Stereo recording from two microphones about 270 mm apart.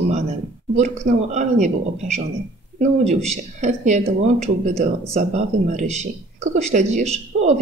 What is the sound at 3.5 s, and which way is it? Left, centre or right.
Speech, right.